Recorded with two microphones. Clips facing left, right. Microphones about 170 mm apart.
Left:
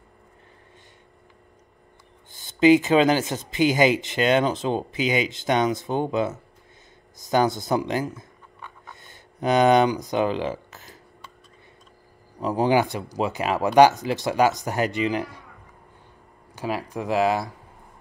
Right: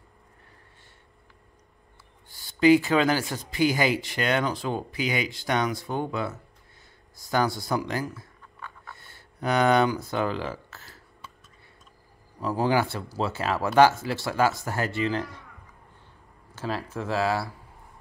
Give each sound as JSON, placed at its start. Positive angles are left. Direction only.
{"t": 2.3, "sound": "speech", "side_deg": 20}
{"t": 7.2, "sound": "writing", "side_deg": 20}
{"t": 12.4, "sound": "speech", "side_deg": 20}
{"t": 16.5, "sound": "speech", "side_deg": 15}